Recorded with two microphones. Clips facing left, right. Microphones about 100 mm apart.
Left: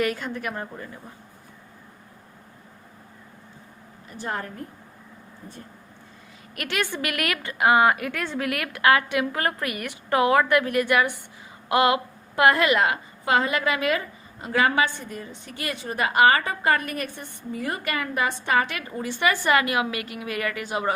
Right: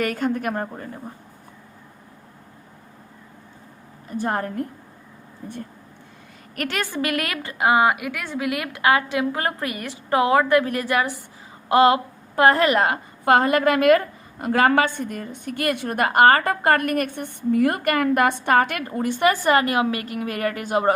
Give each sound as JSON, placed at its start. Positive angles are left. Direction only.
{"t": 0.0, "sound": "a woman's voice", "side_deg": -45}
{"t": 4.1, "sound": "a woman's voice", "side_deg": -45}
{"t": 6.6, "sound": "a woman's voice", "side_deg": -40}